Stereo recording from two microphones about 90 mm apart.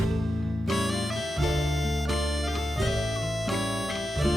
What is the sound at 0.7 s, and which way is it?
Music, centre (ahead or behind).